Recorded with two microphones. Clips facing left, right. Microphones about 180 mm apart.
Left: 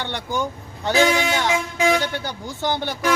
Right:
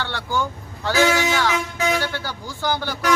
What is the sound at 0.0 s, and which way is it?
Speech, 20° left (ahead or behind).